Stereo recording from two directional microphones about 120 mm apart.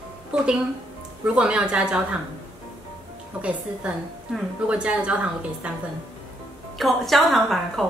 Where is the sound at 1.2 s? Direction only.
10° right (ahead or behind).